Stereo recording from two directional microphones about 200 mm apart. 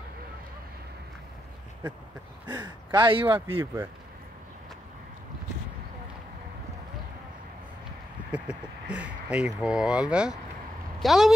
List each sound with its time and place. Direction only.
2.4 s speech: 20° right (ahead or behind)
3.5 s speech: 10° right (ahead or behind)
8.3 s speech: 5° right (ahead or behind)